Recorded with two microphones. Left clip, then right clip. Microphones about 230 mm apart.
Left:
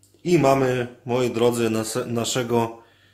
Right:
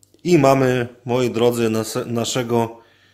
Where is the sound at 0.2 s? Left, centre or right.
Right.